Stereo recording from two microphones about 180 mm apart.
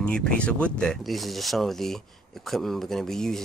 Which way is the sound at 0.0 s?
5° left (ahead or behind).